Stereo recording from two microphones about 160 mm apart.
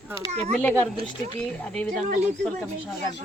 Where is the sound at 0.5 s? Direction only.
10° left (ahead or behind).